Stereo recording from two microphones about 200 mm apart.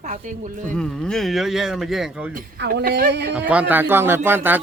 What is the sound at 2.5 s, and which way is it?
Speech, 55° right (ahead or behind).